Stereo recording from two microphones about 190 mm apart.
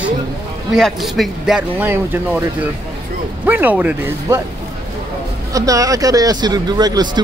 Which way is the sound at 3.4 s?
10° right (ahead or behind).